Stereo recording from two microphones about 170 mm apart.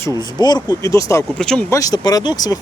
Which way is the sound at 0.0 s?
25° left (ahead or behind).